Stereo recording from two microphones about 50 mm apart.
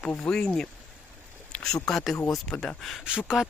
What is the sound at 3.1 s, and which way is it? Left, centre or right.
Speech, centre.